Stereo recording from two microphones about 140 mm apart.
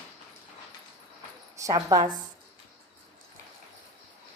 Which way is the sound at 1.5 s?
25° right (ahead or behind).